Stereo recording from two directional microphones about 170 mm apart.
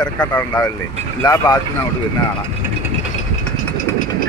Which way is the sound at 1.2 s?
25° left (ahead or behind).